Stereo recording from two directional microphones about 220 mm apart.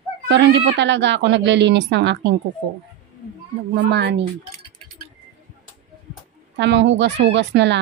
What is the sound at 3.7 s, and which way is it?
Speech, 50° right (ahead or behind).